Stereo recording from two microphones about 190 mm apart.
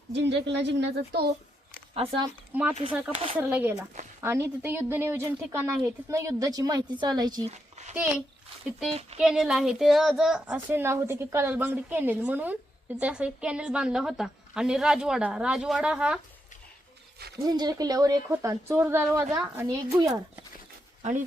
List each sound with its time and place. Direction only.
0.1 s speech: 65° right (ahead or behind)
1.9 s speech: 25° right (ahead or behind)
2.5 s a woman's voice: 10° right (ahead or behind)
7.5 s speech: 35° right (ahead or behind)
9.1 s a woman's voice: 5° right (ahead or behind)
17.3 s a woman's voice: 20° right (ahead or behind)